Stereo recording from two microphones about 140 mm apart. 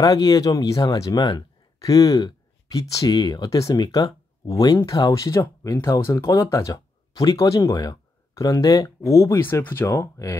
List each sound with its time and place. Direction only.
0.0 s speech: 25° left (ahead or behind)